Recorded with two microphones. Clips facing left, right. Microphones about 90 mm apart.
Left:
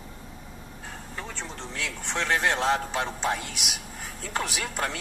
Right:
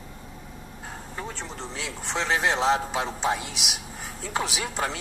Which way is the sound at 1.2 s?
15° right (ahead or behind).